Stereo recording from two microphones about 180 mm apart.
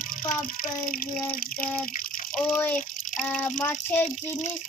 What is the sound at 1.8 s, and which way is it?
Water, 50° left (ahead or behind).